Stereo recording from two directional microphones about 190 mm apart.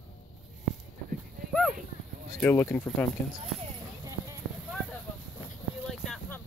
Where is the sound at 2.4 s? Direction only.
10° left (ahead or behind).